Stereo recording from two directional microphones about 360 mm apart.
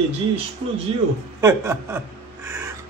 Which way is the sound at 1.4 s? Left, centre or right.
Centre.